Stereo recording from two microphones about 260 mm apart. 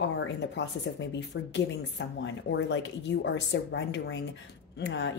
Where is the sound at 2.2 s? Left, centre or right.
Left.